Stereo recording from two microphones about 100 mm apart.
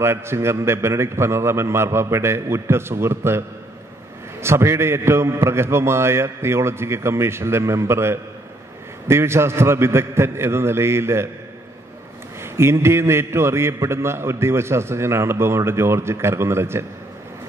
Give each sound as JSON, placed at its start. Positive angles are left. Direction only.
{"t": 0.0, "sound": "a man's voice", "side_deg": -25}
{"t": 12.5, "sound": "a man's voice", "side_deg": -25}